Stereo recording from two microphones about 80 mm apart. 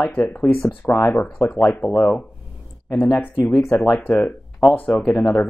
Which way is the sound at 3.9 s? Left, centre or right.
Left.